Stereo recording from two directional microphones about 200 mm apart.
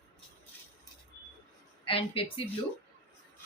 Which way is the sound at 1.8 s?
25° left (ahead or behind).